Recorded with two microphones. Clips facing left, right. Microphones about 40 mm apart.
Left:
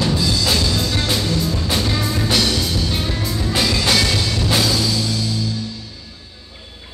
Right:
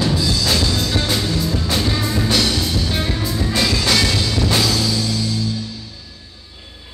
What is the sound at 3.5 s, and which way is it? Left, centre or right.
Music, centre.